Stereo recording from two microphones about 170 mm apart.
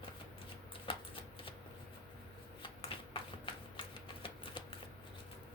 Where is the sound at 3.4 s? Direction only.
30° left (ahead or behind).